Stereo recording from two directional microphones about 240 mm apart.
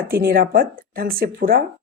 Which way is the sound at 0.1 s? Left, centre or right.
Right.